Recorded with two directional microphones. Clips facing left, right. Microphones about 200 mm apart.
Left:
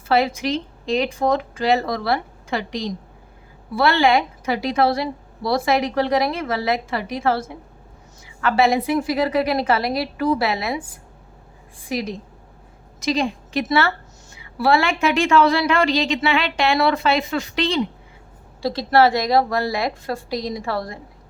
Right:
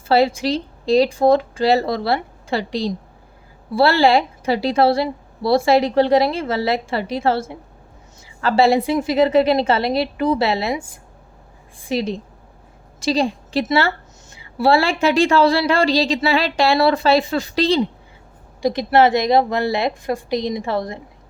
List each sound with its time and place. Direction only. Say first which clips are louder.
0.1 s a woman's voice: right 3 dB; 30° right (ahead or behind)
11.9 s a woman's voice: right 4 dB; 25° right (ahead or behind)
18.6 s a woman's voice: right 2 dB; 15° right (ahead or behind)